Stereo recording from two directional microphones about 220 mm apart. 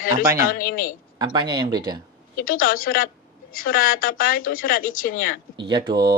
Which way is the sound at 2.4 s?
40° left (ahead or behind).